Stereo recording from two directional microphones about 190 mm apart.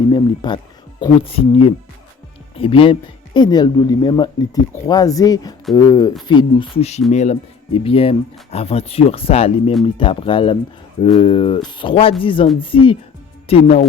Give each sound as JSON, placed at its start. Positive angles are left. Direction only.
{"t": 0.1, "sound": "speech", "side_deg": 25}